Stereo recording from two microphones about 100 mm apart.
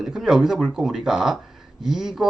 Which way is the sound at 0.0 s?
5° right (ahead or behind).